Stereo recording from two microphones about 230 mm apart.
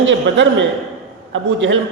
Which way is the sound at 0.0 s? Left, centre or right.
Right.